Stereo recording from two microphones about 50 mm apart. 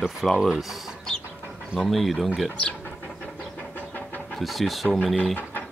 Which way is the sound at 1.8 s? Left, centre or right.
Centre.